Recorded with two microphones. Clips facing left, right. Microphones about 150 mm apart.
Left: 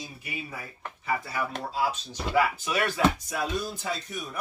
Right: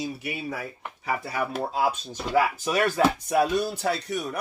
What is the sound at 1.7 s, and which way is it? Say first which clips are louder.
Speech: right 1 dB; 50° right (ahead or behind).